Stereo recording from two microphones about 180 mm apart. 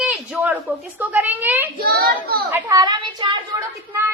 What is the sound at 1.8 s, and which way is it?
Speech, 60° right (ahead or behind).